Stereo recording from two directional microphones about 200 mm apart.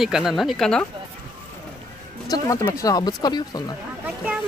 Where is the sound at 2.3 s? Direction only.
15° left (ahead or behind).